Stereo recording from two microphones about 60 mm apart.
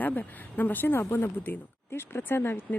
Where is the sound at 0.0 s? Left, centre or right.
Left.